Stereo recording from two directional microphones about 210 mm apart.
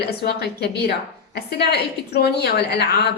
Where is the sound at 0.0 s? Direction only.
50° left (ahead or behind).